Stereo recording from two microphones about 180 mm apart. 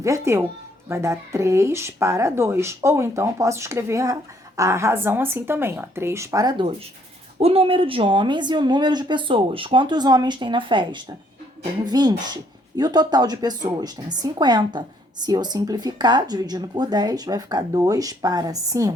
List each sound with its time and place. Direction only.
0.0 s speech: 15° right (ahead or behind)